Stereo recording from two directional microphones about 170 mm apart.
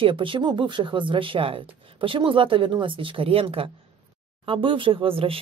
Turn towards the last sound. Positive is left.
turn(degrees=-35)  # may be behind; listen again after turning